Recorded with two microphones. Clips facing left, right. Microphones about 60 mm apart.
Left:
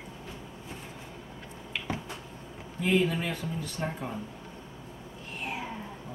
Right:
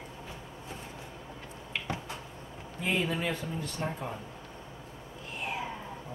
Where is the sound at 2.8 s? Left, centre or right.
Centre.